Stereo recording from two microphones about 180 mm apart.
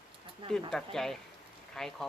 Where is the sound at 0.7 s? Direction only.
Centre (ahead or behind).